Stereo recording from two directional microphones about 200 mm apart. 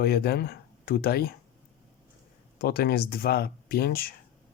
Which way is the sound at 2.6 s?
50° left (ahead or behind).